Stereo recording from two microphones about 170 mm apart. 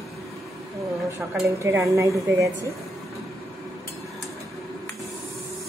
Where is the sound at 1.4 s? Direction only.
15° right (ahead or behind).